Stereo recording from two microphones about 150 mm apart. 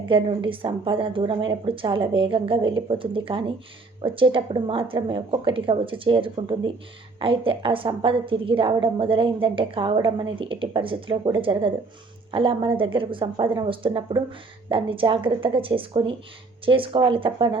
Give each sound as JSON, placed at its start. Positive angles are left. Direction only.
{"t": 0.1, "sound": "a woman's voice", "side_deg": -35}